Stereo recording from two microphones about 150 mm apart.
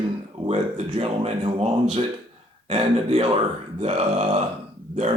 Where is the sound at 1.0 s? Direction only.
45° right (ahead or behind).